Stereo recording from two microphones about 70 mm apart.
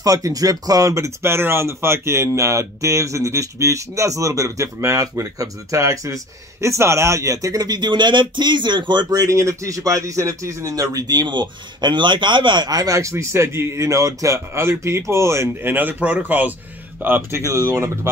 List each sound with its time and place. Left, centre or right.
0.0 s speech: right
9.2 s speech: right
17.4 s speech: right